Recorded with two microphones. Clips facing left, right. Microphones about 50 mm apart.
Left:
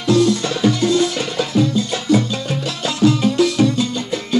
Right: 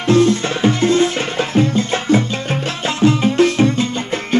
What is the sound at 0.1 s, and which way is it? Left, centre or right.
Music, right.